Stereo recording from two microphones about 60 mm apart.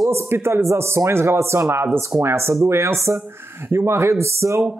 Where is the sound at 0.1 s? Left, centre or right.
Right.